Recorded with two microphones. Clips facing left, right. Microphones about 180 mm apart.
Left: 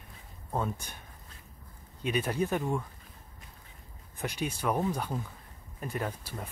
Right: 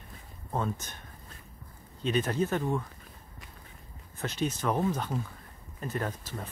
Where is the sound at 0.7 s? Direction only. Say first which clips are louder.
Right 2 dB; 10° left (ahead or behind).